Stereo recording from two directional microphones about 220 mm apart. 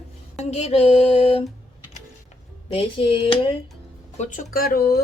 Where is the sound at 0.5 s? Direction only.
30° left (ahead or behind).